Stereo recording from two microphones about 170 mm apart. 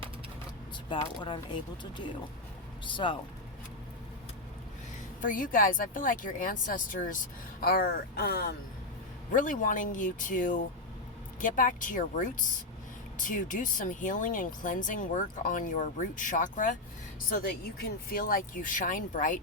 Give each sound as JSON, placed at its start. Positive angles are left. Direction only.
{"t": 0.9, "sound": "speech", "side_deg": 30}
{"t": 2.8, "sound": "speech", "side_deg": 30}
{"t": 5.2, "sound": "speech", "side_deg": 55}
{"t": 7.6, "sound": "speech", "side_deg": 65}
{"t": 9.3, "sound": "speech", "side_deg": 50}
{"t": 17.2, "sound": "speech", "side_deg": 65}